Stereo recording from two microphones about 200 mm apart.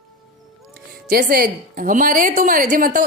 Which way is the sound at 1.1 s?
45° right (ahead or behind).